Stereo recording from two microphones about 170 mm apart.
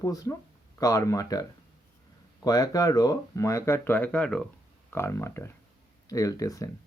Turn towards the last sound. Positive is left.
turn(degrees=20)  # may be behind; listen again after turning